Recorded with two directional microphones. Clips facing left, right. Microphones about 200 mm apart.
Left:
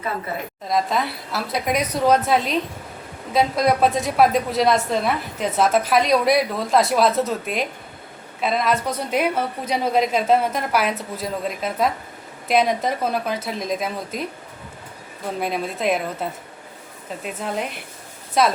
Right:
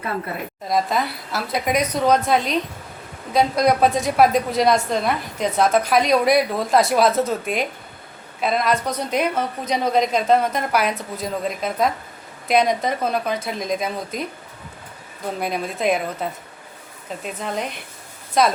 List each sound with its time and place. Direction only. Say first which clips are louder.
0.7 s a woman's voice: even; centre (ahead or behind)
15.4 s a woman's voice: even; centre (ahead or behind)